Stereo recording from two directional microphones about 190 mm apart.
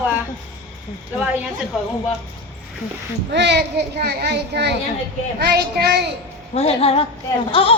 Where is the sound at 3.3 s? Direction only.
65° right (ahead or behind).